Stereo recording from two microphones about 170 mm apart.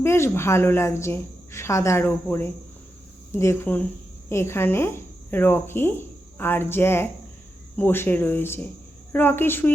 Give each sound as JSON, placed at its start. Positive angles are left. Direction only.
{"t": 0.0, "sound": "speech", "side_deg": 15}